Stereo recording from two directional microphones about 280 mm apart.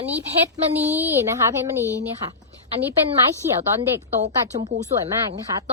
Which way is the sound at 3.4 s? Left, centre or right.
Centre.